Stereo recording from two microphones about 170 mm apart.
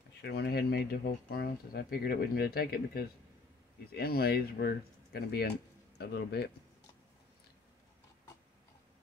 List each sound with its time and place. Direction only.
0.2 s speech: 75° left (ahead or behind)